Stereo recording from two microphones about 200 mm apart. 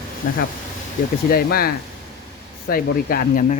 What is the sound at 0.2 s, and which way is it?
Speech, 45° left (ahead or behind).